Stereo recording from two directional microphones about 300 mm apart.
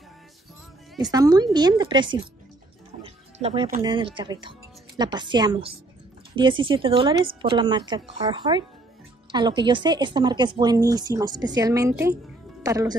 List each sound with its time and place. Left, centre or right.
1.1 s a woman's voice: centre